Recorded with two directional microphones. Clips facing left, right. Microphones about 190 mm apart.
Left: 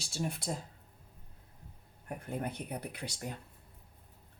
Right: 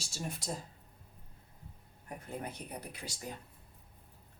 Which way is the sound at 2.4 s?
60° left (ahead or behind).